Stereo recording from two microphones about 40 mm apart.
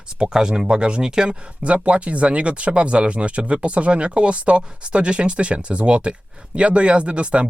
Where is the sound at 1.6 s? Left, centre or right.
Right.